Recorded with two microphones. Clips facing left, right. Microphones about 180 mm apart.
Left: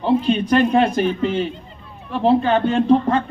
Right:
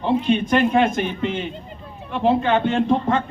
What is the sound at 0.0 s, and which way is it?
A man's voice, 35° left (ahead or behind).